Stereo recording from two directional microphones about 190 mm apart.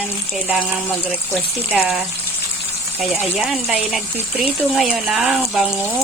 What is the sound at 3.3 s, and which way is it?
Speech, centre (ahead or behind).